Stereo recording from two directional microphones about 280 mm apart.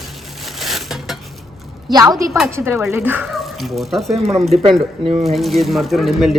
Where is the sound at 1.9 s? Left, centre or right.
Centre.